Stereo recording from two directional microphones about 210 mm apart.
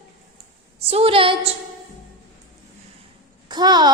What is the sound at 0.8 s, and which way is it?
Speech, 30° right (ahead or behind).